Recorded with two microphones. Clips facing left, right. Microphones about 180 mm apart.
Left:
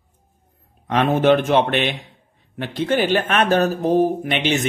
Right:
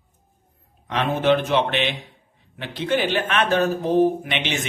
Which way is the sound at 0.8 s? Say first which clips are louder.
Left 4 dB; 50° left (ahead or behind).